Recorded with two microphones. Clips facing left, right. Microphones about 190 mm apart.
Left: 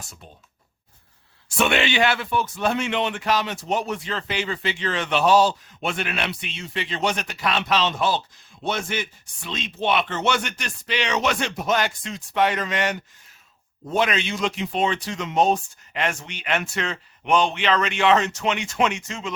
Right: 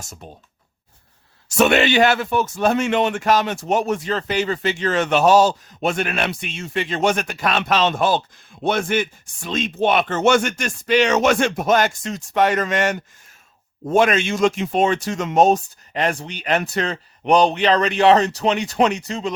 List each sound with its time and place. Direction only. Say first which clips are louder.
0.0 s speech: right 5 dB; 45° right (ahead or behind)
1.5 s speech: right 6 dB; 40° right (ahead or behind)